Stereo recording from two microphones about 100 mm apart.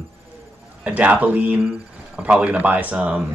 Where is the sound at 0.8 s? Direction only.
10° right (ahead or behind).